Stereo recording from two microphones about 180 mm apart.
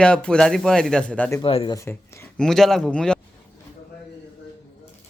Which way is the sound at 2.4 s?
Centre (ahead or behind).